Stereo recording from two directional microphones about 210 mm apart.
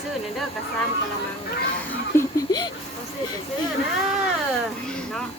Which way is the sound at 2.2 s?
15° left (ahead or behind).